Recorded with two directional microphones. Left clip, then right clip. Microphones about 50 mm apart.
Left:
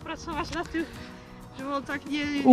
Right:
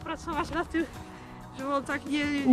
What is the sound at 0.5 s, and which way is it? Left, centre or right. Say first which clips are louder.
Speech: right 1 dB; right.